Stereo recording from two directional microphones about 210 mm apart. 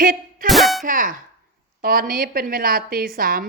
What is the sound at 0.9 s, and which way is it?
Speech, 40° right (ahead or behind).